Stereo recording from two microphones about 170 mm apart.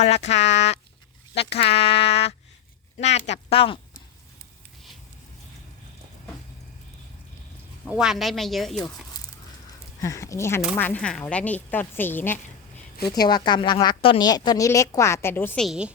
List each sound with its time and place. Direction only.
0.0 s speech: 40° left (ahead or behind)
7.9 s speech: 5° right (ahead or behind)
10.0 s speech: 20° left (ahead or behind)
13.1 s a woman's voice: 25° left (ahead or behind); by 15.9 s centre (ahead or behind)